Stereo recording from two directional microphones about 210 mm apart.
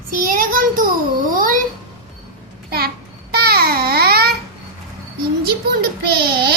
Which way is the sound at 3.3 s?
45° right (ahead or behind).